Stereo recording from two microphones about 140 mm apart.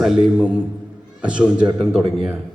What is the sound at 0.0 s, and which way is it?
A man's voice, 5° right (ahead or behind).